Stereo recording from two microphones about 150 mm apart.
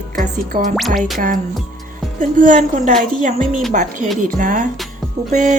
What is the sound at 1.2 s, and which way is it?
Speech, 65° right (ahead or behind).